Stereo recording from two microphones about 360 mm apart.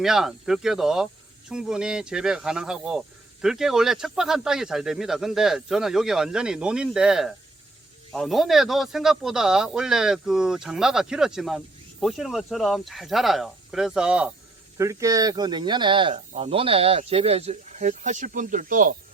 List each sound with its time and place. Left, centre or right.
0.0 s speech: centre; by 18.9 s right